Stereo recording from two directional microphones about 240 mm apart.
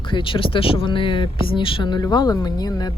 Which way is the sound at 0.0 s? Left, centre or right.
Centre.